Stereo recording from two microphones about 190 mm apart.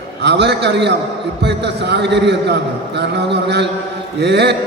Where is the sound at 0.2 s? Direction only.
60° right (ahead or behind).